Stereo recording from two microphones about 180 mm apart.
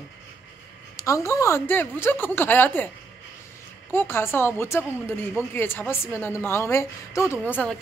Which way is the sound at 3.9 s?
10° left (ahead or behind).